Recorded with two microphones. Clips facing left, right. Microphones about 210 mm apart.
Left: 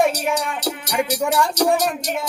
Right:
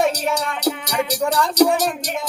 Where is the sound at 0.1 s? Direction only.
10° left (ahead or behind).